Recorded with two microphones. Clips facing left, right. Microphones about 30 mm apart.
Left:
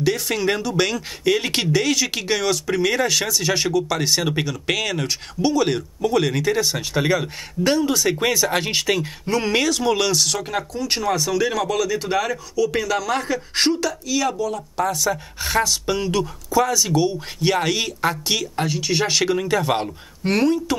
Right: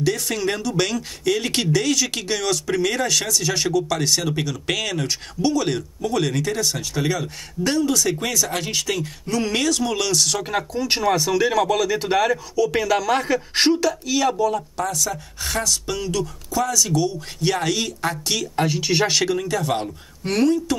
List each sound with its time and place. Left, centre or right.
0.0 s speech: centre
10.4 s speech: centre
14.8 s speech: centre
19.2 s speech: centre